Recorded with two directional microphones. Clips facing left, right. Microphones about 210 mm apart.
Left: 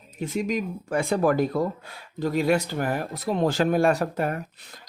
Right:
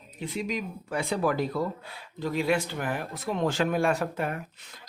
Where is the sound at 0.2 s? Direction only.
45° left (ahead or behind).